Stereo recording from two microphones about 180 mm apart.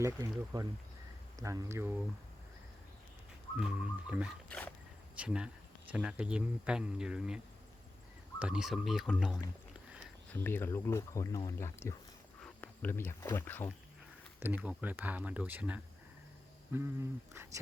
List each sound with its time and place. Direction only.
0.0 s speech: 20° right (ahead or behind)
3.6 s speech: 5° right (ahead or behind)
10.2 s speech: 10° left (ahead or behind)
14.3 s speech: 10° right (ahead or behind)